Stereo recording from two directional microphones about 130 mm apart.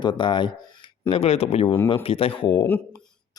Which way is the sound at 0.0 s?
35° left (ahead or behind).